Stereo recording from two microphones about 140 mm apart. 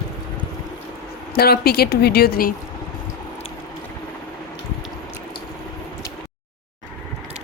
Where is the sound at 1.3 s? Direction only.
90° left.